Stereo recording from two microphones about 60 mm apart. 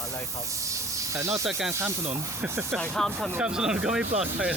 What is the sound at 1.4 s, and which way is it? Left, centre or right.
Speech, centre.